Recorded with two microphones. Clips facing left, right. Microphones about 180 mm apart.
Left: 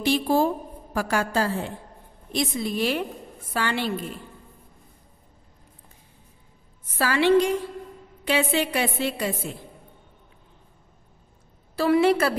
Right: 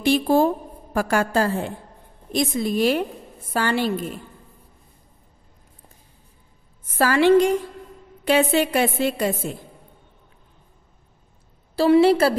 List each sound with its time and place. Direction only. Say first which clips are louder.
0.0 s a woman's voice: right 4 dB; 55° right (ahead or behind)
7.0 s a woman's voice: right 4 dB; 45° right (ahead or behind)
11.7 s a woman's voice: right 4 dB; 30° right (ahead or behind)